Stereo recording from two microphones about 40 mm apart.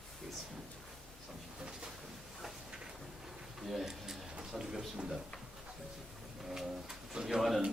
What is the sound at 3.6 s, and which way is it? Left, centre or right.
Tick-tock, centre.